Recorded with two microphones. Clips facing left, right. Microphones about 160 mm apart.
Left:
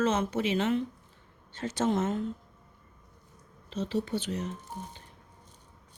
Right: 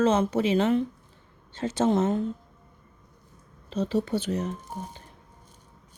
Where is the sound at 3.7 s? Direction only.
40° right (ahead or behind).